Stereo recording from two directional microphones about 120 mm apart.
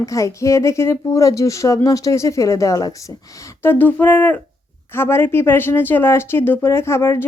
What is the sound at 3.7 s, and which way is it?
A woman's voice, 15° left (ahead or behind).